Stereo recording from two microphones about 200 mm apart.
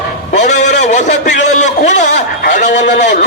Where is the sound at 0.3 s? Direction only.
35° left (ahead or behind).